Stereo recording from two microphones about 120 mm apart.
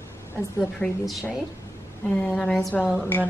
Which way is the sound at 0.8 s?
15° left (ahead or behind).